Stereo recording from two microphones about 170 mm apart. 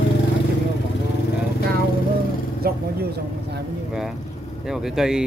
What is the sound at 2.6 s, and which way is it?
Speech, 70° right (ahead or behind).